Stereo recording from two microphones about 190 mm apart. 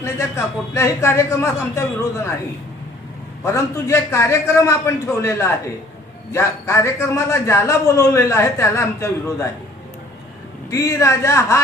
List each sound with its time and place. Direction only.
0.0 s a man's voice: 15° left (ahead or behind)
3.4 s a man's voice: 15° left (ahead or behind)
10.7 s a man's voice: 15° left (ahead or behind)